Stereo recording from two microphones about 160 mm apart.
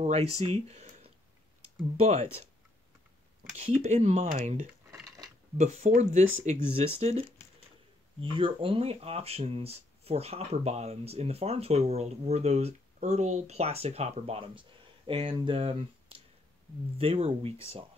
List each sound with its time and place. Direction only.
0.0 s speech: 40° right (ahead or behind)
3.5 s speech: 45° right (ahead or behind)
5.6 s speech: 45° right (ahead or behind)